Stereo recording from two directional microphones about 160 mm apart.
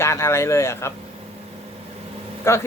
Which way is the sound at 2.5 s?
15° left (ahead or behind).